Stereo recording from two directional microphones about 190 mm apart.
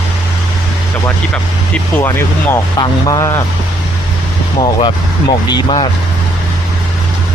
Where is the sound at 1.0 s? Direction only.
5° left (ahead or behind).